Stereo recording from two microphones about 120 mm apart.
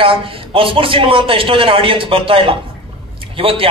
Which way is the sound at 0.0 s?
50° right (ahead or behind).